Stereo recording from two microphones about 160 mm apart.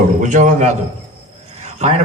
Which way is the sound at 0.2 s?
50° right (ahead or behind).